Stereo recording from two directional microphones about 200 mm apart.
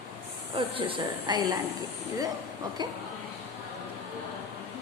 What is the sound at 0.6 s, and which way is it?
A woman's voice, 25° right (ahead or behind).